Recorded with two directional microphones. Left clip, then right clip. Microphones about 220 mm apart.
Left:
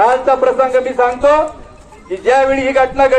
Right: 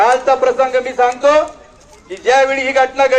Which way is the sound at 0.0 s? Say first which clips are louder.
Left 1 dB; 45° right (ahead or behind).